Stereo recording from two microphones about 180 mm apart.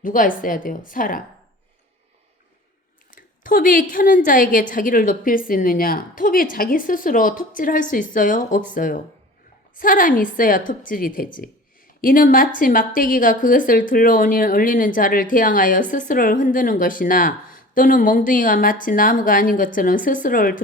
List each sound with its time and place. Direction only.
0.0 s speech: 50° left (ahead or behind)
3.1 s a woman's voice: 50° left (ahead or behind)